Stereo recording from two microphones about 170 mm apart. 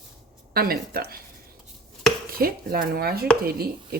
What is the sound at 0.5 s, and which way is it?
Speech, 65° right (ahead or behind).